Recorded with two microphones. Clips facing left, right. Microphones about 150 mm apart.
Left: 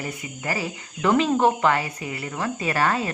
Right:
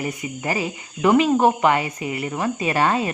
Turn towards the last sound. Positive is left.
turn(degrees=-20)  # may be behind; listen again after turning